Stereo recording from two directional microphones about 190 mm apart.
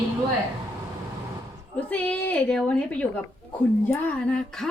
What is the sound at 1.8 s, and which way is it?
A woman's voice, 5° left (ahead or behind).